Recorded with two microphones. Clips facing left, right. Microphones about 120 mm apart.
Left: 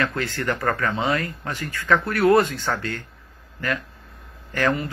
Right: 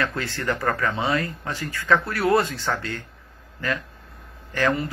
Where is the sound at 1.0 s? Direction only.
30° right (ahead or behind).